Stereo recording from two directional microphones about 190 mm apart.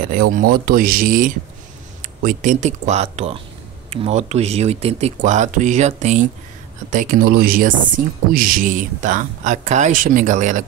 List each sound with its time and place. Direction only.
0.1 s speech: 45° right (ahead or behind)